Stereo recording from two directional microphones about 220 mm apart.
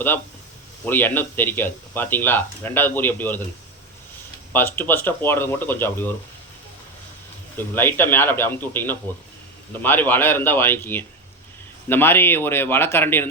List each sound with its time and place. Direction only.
0.9 s speech: 10° left (ahead or behind)
4.5 s speech: 10° left (ahead or behind)
7.8 s speech: 10° left (ahead or behind)